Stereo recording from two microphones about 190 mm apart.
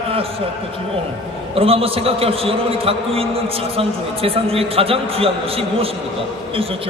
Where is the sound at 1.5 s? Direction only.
30° right (ahead or behind).